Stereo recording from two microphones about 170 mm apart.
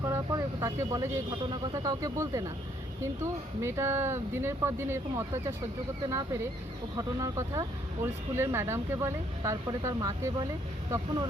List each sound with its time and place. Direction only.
0.0 s speech: 20° right (ahead or behind)